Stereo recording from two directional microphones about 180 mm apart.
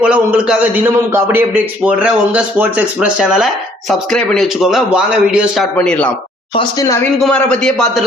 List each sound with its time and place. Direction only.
0.0 s a man's voice: 5° right (ahead or behind)
6.5 s speech: 25° left (ahead or behind)
7.3 s a man's voice: 5° left (ahead or behind)